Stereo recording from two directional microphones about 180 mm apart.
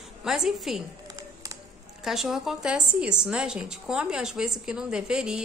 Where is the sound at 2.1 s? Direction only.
Centre (ahead or behind).